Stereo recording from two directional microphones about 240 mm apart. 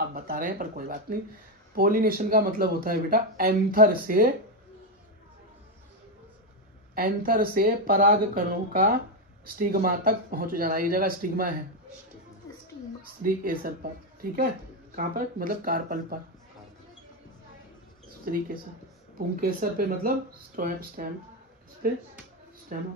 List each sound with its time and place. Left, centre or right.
0.0 s a man's voice: right
7.0 s a man's voice: right
13.2 s a man's voice: right
18.2 s a man's voice: right
22.7 s a man's voice: right